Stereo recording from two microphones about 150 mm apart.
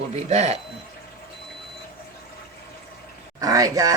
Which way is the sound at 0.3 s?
45° right (ahead or behind).